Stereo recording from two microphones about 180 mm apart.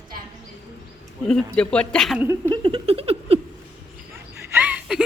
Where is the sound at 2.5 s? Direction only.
30° right (ahead or behind).